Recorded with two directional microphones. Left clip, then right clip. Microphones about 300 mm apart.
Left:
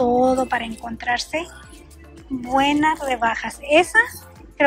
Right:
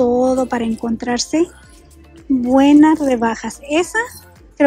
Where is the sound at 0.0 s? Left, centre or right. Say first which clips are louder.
Right 3 dB; centre.